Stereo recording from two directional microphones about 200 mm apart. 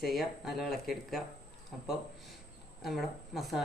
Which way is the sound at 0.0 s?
Centre (ahead or behind).